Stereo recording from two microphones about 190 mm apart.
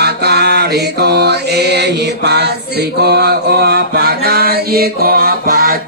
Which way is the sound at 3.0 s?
60° right (ahead or behind).